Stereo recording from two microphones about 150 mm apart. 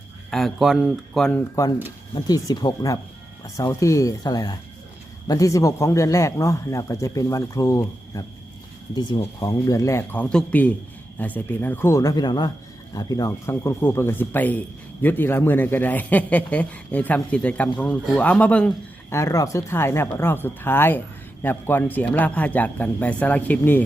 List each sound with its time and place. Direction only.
0.3 s speech: centre (ahead or behind)
2.1 s speech: 25° left (ahead or behind)
9.2 s speech: 20° left (ahead or behind)
19.1 s speech: 20° left (ahead or behind)